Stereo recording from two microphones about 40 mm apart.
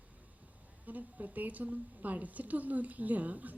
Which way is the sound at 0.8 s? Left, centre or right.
Right.